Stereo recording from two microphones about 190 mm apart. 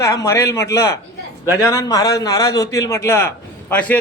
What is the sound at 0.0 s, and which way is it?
A man's voice, 15° left (ahead or behind).